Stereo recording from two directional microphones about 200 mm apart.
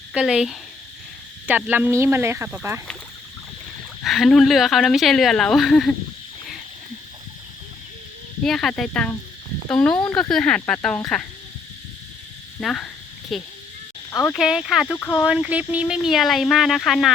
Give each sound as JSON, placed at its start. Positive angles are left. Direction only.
{"t": 0.1, "sound": "speech", "side_deg": -5}
{"t": 4.0, "sound": "speech", "side_deg": 0}
{"t": 8.4, "sound": "speech", "side_deg": 0}
{"t": 12.5, "sound": "speech", "side_deg": 5}
{"t": 14.1, "sound": "speech", "side_deg": 15}
{"t": 14.3, "sound": "speech", "side_deg": 0}
{"t": 14.9, "sound": "speech", "side_deg": 10}
{"t": 15.2, "sound": "speech", "side_deg": -5}